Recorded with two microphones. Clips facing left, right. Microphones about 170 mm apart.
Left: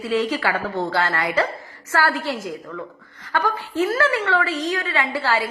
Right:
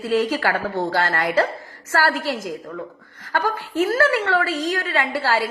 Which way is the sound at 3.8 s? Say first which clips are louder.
Right 2 dB; 45° right (ahead or behind).